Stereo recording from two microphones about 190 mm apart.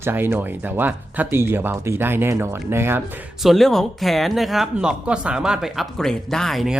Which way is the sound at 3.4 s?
Centre (ahead or behind).